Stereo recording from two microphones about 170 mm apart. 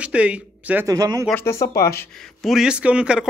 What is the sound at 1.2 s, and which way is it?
Speech, 15° left (ahead or behind).